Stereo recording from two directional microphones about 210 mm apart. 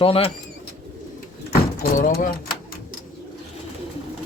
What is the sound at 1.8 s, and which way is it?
Door, 40° left (ahead or behind).